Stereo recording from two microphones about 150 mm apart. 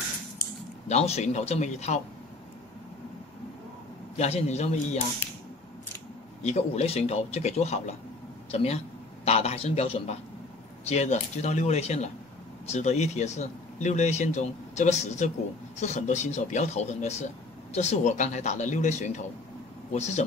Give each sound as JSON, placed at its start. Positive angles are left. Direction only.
{"t": 0.8, "sound": "speech", "side_deg": 45}
{"t": 4.2, "sound": "speech", "side_deg": 45}
{"t": 6.4, "sound": "a man's voice", "side_deg": 45}